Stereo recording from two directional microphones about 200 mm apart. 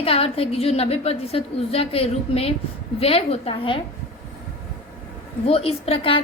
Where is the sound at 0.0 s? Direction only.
30° left (ahead or behind).